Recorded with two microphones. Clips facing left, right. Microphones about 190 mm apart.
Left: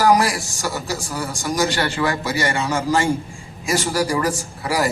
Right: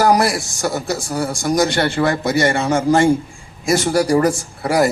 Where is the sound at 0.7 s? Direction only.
50° right (ahead or behind).